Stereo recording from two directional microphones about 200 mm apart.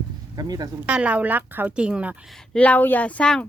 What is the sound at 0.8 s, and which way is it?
Speech, 5° right (ahead or behind).